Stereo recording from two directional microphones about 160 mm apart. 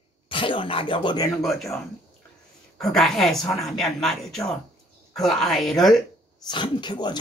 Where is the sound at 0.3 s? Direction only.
30° left (ahead or behind).